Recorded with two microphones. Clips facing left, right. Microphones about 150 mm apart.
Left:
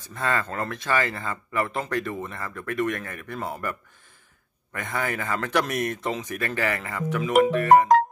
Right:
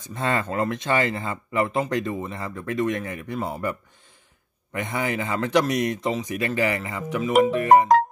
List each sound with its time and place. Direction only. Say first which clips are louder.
0.0 s speech: right 2 dB; 25° right (ahead or behind)
4.7 s speech: right 3 dB; 20° right (ahead or behind)